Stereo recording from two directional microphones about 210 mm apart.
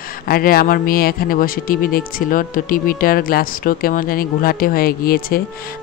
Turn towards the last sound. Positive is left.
turn(degrees=45)  # may be behind; listen again after turning